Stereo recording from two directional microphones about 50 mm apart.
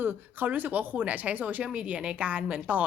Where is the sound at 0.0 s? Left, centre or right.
Right.